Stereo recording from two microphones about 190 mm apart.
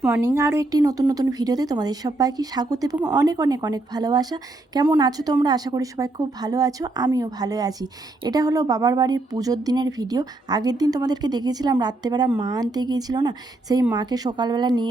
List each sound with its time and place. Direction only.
0.3 s a woman's voice: 15° right (ahead or behind)